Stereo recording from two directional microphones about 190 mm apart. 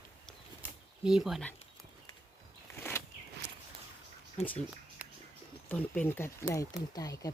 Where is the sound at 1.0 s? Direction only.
Centre (ahead or behind).